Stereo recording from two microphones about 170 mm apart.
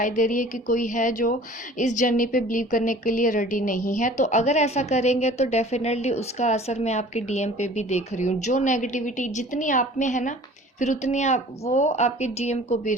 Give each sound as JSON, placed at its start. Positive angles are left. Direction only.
{"t": 0.0, "sound": "a woman's voice", "side_deg": 50}